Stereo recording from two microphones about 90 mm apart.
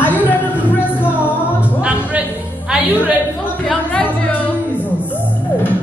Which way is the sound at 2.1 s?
15° right (ahead or behind).